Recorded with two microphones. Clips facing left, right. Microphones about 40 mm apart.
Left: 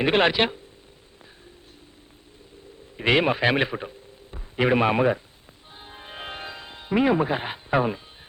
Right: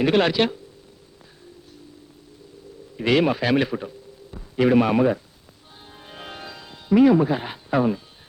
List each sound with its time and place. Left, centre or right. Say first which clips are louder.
0.0 s speech: right 1 dB; left
3.0 s a man's voice: right 1 dB; left
5.8 s music: left 2 dB; left